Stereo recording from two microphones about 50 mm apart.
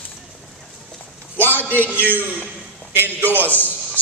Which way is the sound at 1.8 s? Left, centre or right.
Left.